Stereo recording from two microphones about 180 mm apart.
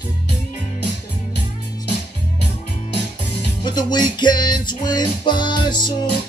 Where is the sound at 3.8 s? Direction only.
25° left (ahead or behind).